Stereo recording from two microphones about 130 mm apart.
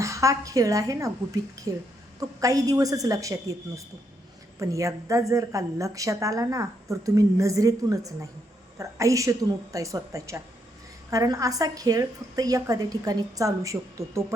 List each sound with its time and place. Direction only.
0.0 s a woman's voice: 25° right (ahead or behind)